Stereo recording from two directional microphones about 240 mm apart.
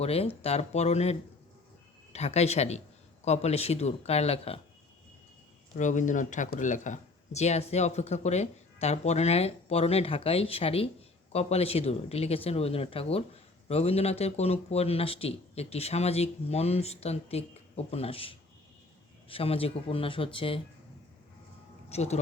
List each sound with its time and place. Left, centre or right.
0.0 s speech: left
2.1 s speech: left
5.7 s speech: left
21.8 s speech: left